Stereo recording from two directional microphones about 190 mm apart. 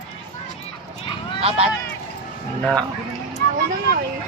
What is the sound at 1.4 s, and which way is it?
Speech, 30° right (ahead or behind).